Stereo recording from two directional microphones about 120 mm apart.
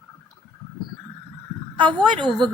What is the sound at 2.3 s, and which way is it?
Speech, centre (ahead or behind).